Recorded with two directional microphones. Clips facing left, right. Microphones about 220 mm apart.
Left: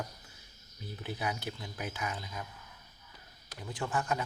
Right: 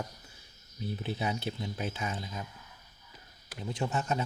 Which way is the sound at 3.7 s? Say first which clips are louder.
Right 2 dB; 25° right (ahead or behind).